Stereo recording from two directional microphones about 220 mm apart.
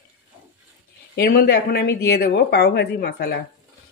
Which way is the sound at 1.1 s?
45° left (ahead or behind).